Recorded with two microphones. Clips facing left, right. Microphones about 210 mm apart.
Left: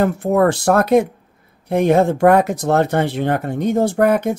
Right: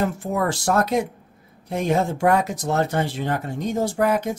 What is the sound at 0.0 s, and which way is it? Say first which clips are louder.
Speech: left 8 dB; 60° left (ahead or behind).